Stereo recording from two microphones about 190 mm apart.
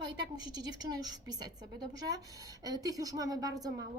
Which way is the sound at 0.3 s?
20° right (ahead or behind).